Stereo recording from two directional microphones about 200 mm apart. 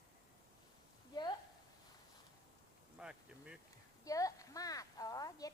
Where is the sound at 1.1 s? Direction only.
20° left (ahead or behind).